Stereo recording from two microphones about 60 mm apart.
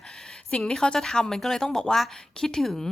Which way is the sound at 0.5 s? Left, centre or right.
Centre.